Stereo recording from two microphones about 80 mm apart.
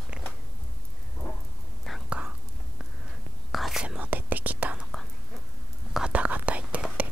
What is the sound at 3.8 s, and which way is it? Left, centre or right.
Whispering, centre.